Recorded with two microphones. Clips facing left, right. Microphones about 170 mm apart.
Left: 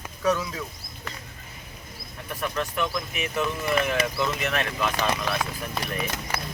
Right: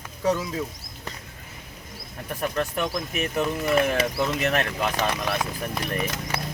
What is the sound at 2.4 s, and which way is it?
Speech, 40° right (ahead or behind).